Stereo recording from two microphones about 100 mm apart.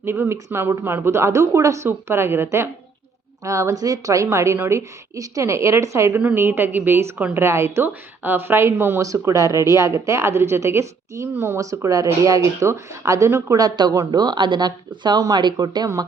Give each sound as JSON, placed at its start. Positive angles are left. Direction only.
{"t": 0.0, "sound": "speech", "side_deg": -25}
{"t": 13.6, "sound": "speech", "side_deg": -45}